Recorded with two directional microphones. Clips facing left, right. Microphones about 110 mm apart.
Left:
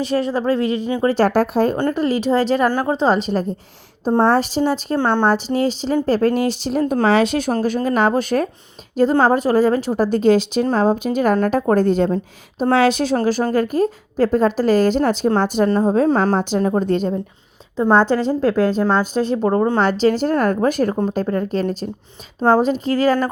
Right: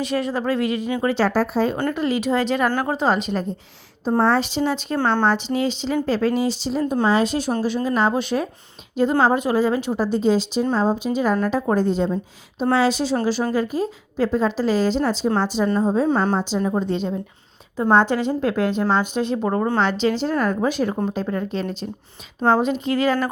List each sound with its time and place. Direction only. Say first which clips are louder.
0.0 s a woman's voice: left 4 dB; 35° left (ahead or behind)
1.0 s speech: left 5 dB; 45° left (ahead or behind)
1.9 s a woman's voice: left 3 dB; 40° left (ahead or behind)
2.8 s a woman's voice: left 3 dB; 25° left (ahead or behind)
4.9 s a woman's voice: left 2 dB; 20° left (ahead or behind)
5.3 s speech: left 3 dB; 40° left (ahead or behind); by 7.5 s 65° left (ahead or behind)
7.6 s a woman's voice: left 3 dB; 50° left (ahead or behind)
10.0 s a woman's voice: left 5 dB; 60° left (ahead or behind)
13.1 s a woman's voice: left 3 dB; 45° left (ahead or behind)
16.1 s a woman's voice: left 3 dB; 70° left (ahead or behind); by 17.1 s 50° left (ahead or behind)
17.9 s a woman's voice: left 2 dB; 35° left (ahead or behind)
19.5 s a woman's voice: left 5 dB; 20° left (ahead or behind)
19.8 s a woman's voice: left 4 dB; 40° left (ahead or behind)